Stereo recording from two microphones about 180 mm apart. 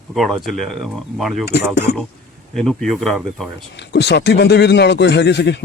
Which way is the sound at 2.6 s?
Centre (ahead or behind).